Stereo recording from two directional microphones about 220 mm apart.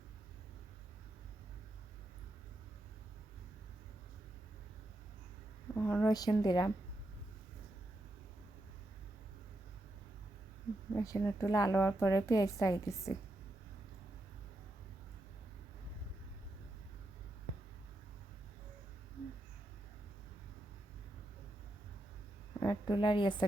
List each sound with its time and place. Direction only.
5.7 s a woman's voice: 10° left (ahead or behind)
10.9 s a woman's voice: 15° left (ahead or behind)
22.6 s a woman's voice: 20° left (ahead or behind)